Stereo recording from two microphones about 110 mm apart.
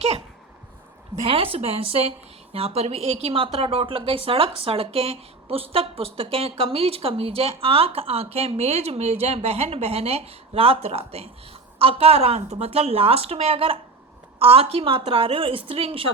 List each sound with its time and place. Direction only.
1.2 s a woman's voice: 60° right (ahead or behind)